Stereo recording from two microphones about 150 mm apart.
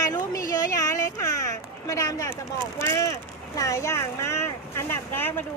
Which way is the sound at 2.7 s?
20° left (ahead or behind).